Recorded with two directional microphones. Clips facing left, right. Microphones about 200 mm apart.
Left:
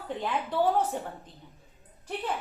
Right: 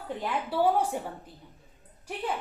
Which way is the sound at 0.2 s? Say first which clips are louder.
Right 1 dB; 10° right (ahead or behind).